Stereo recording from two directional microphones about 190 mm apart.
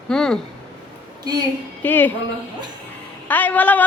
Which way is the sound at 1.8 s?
10° left (ahead or behind).